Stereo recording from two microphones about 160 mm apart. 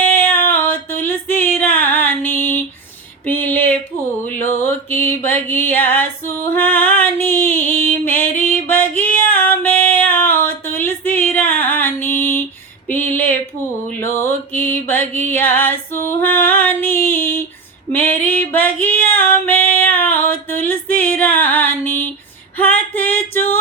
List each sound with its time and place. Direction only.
0.0 s female singing: 10° left (ahead or behind)
3.2 s a sound: 10° left (ahead or behind)
4.4 s mantra: 10° left (ahead or behind)
9.0 s female singing: 10° left (ahead or behind)
12.9 s a sound: 10° left (ahead or behind)
14.0 s mantra: 15° left (ahead or behind)
17.9 s female singing: 10° left (ahead or behind)